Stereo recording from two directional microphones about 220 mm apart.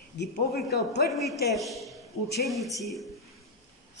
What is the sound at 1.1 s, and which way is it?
A man's voice, centre (ahead or behind).